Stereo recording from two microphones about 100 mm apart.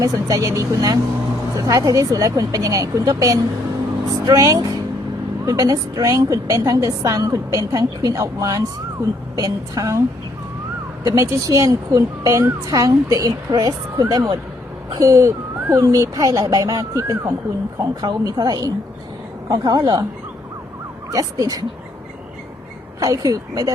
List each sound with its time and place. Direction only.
0.0 s speech: 35° right (ahead or behind)
11.0 s speech: 35° right (ahead or behind)
21.1 s speech: 35° right (ahead or behind)
23.0 s speech: 35° right (ahead or behind)